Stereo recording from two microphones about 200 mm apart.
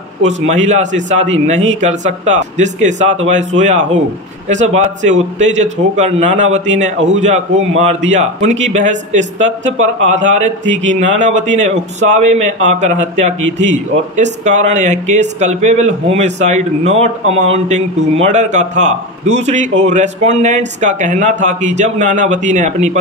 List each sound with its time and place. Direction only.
0.5 s a man's voice: 35° right (ahead or behind)